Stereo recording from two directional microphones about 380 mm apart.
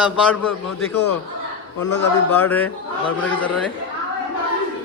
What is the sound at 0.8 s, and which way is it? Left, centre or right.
Speech, left.